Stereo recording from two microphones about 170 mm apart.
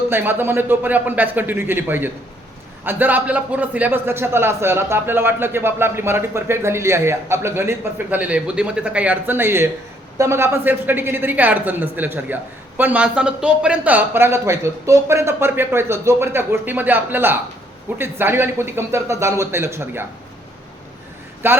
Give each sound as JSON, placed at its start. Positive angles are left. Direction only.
{"t": 0.1, "sound": "a woman's voice", "side_deg": -10}
{"t": 21.4, "sound": "a woman's voice", "side_deg": -15}